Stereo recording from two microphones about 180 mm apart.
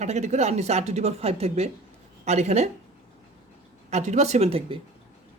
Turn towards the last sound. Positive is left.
turn(degrees=-30)  # may be behind; listen again after turning